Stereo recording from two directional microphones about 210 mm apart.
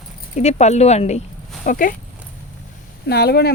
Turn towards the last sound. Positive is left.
turn(degrees=50)  # may be behind; listen again after turning